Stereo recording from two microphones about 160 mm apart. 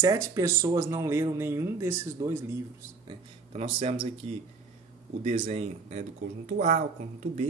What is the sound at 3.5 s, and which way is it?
Speech, 40° right (ahead or behind).